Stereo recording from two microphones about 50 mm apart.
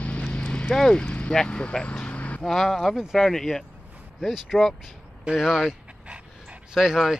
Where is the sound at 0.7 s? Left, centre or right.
Centre.